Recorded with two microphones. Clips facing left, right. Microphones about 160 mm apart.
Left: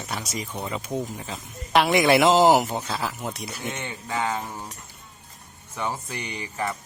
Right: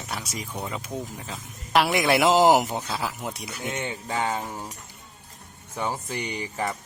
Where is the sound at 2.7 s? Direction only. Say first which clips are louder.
Left 1 dB; 5° left (ahead or behind).